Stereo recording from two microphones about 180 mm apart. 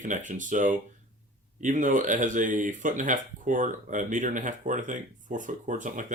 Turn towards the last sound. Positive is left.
turn(degrees=-45)  # may be behind; listen again after turning